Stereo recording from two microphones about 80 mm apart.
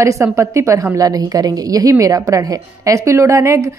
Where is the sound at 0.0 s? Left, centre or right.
Right.